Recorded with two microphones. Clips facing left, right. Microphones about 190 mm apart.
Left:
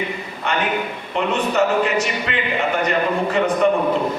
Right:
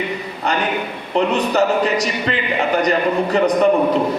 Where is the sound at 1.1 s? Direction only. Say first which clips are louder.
Right 3 dB; 35° right (ahead or behind).